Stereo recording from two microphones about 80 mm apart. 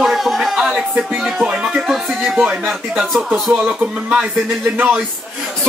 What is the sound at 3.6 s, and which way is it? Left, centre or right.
Speech, centre.